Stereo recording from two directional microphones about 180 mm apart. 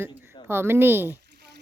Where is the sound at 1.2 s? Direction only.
65° right (ahead or behind).